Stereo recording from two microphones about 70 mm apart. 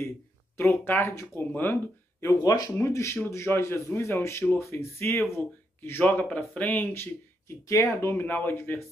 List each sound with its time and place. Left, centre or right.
0.6 s a man's voice: left
2.4 s speech: left
2.7 s a man's voice: left
5.9 s speech: left
6.2 s speech: centre
6.9 s a man's voice: left